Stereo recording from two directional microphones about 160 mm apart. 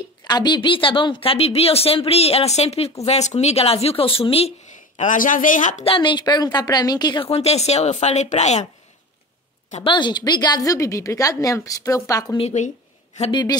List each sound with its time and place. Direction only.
0.2 s a woman's voice: 25° left (ahead or behind); by 5.9 s 50° left (ahead or behind)
5.9 s a woman's voice: 30° left (ahead or behind)
7.2 s speech: 40° left (ahead or behind)
9.8 s a woman's voice: 30° left (ahead or behind)
12.4 s speech: 45° left (ahead or behind)
13.2 s a woman's voice: 30° left (ahead or behind)